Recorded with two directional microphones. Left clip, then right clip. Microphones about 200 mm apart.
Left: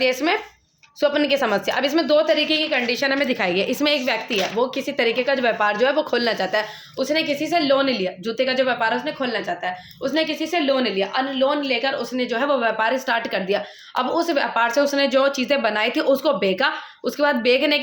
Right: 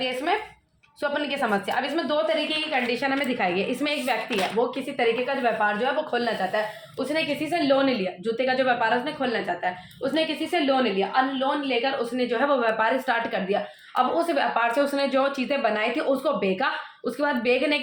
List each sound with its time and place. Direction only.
1.0 s a woman's voice: 50° left (ahead or behind); by 4.4 s 35° left (ahead or behind)
4.9 s a woman's voice: 50° left (ahead or behind)
7.1 s a woman's voice: 30° left (ahead or behind)